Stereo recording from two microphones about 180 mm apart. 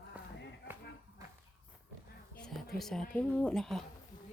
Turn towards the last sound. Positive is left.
turn(degrees=0)  # may be behind; listen again after turning